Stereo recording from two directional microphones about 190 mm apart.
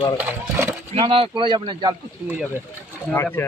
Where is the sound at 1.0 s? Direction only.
25° right (ahead or behind).